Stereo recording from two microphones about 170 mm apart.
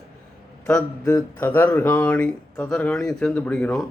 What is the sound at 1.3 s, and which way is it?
A man's voice, 10° left (ahead or behind).